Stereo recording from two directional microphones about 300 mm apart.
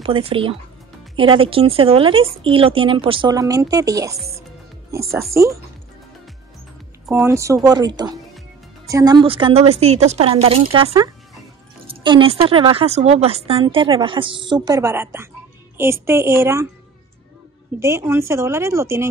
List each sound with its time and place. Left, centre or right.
0.0 s a woman's voice: centre
5.0 s a woman's voice: centre
7.1 s a woman's voice: centre
17.7 s a woman's voice: centre